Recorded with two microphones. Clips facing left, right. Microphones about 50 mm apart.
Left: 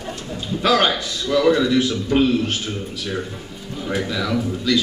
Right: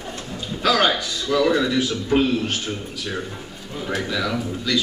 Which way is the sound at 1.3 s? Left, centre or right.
Centre.